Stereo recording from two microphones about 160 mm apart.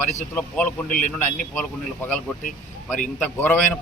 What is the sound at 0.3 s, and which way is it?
A man's voice, 10° left (ahead or behind).